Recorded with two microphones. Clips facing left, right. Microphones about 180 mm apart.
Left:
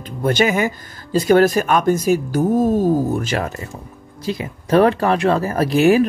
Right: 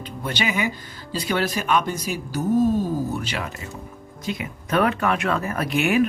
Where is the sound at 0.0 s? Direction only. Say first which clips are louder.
Left 9 dB; 45° left (ahead or behind).